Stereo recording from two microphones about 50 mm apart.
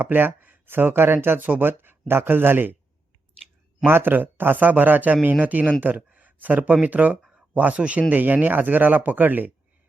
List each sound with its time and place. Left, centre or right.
0.0 s speech: right
3.8 s speech: right
7.3 s a sound: right
7.8 s speech: right